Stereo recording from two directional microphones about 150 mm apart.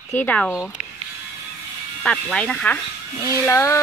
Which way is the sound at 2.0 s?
5° left (ahead or behind).